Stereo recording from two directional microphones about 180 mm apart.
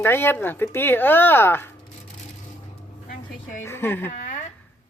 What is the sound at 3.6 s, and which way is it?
Speech, 15° left (ahead or behind).